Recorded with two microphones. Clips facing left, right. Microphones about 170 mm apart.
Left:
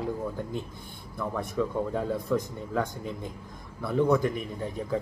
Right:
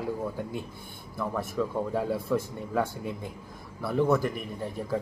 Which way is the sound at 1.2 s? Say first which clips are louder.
Even; 5° right (ahead or behind).